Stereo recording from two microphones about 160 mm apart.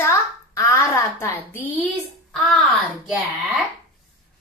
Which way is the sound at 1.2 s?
15° left (ahead or behind).